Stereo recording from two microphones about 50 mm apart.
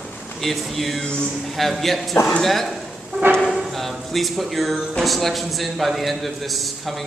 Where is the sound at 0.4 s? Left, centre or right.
Centre.